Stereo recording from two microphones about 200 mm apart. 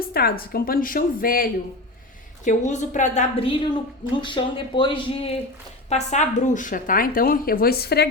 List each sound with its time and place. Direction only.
0.0 s a woman's voice: 50° left (ahead or behind)